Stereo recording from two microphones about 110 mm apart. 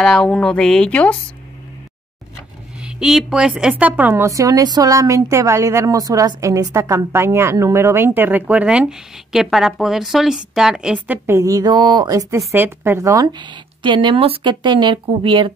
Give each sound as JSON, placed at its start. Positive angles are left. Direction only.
{"t": 0.0, "sound": "a woman's voice", "side_deg": 5}
{"t": 2.8, "sound": "a woman's voice", "side_deg": -5}
{"t": 4.2, "sound": "a woman's voice", "side_deg": -30}
{"t": 11.2, "sound": "speech", "side_deg": -30}